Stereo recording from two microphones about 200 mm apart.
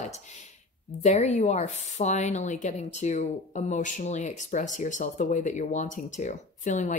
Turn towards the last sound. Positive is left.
turn(degrees=40)  # may be behind; listen again after turning